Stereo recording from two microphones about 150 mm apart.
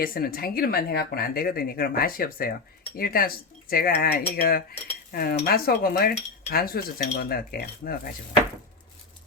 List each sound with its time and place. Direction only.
0.0 s speech: 75° left (ahead or behind)